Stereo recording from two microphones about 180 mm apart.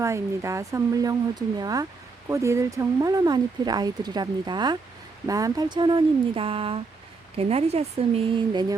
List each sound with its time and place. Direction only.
0.0 s speech: 15° right (ahead or behind)